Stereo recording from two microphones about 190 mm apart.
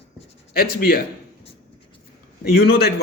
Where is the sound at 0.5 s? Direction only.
55° left (ahead or behind).